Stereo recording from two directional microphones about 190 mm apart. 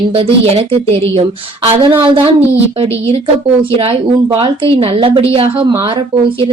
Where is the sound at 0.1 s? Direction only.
30° right (ahead or behind).